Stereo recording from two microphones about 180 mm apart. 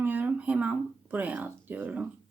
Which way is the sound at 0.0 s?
10° right (ahead or behind).